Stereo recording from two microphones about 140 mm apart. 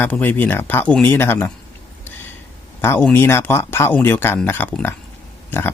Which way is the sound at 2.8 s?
15° left (ahead or behind).